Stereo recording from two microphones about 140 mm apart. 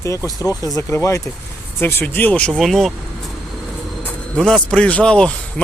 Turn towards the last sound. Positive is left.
turn(degrees=5)  # may be behind; listen again after turning